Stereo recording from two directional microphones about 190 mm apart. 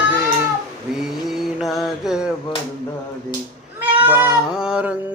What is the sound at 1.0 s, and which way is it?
Mantra, centre (ahead or behind).